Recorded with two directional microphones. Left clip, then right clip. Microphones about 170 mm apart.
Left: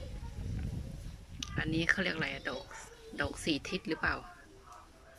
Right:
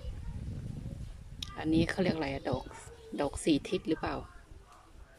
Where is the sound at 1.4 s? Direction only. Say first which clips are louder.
Right 2 dB; 20° right (ahead or behind).